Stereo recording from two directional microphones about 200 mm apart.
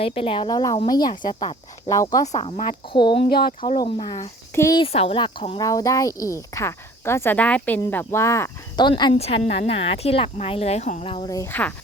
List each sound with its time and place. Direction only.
0.0 s a woman's voice: 30° left (ahead or behind)
2.2 s a woman's voice: 35° left (ahead or behind)
3.2 s speech: 50° left (ahead or behind)
3.6 s a woman's voice: 25° left (ahead or behind)
4.8 s a woman's voice: 30° left (ahead or behind)
11.3 s speech: 10° left (ahead or behind)